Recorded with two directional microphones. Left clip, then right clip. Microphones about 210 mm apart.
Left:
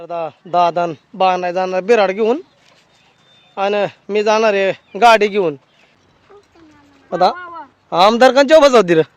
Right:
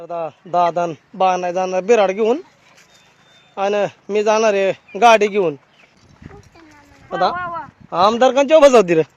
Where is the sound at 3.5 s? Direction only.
15° left (ahead or behind).